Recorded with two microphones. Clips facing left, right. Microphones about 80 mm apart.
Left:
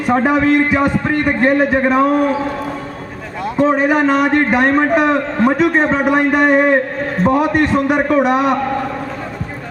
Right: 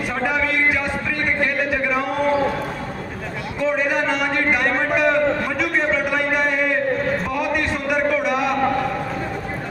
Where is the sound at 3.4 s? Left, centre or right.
Left.